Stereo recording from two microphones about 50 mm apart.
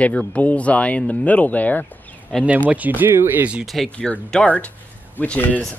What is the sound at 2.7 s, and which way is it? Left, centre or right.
Speech, right.